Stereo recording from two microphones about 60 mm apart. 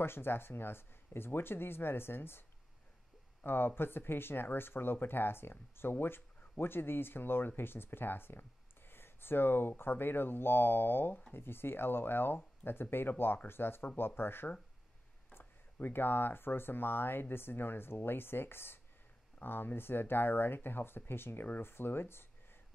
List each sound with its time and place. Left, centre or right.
0.0 s speech: left
3.4 s speech: left